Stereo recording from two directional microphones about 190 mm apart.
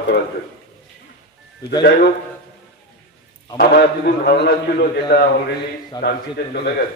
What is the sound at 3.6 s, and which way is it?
A man's voice, 55° left (ahead or behind).